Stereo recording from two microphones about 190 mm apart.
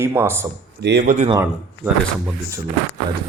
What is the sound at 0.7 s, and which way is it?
Speech, 60° right (ahead or behind).